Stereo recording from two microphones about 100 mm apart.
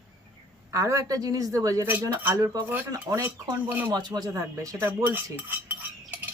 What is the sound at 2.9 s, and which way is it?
Speech, 30° right (ahead or behind).